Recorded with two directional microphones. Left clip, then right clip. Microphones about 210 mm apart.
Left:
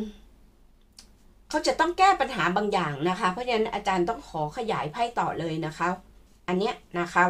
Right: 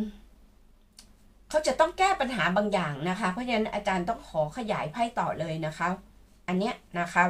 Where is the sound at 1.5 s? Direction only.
35° left (ahead or behind).